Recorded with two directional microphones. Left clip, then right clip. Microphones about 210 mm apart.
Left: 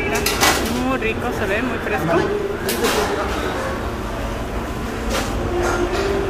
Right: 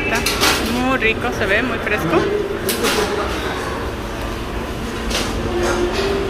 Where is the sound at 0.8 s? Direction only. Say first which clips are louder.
Right 4 dB; 5° left (ahead or behind).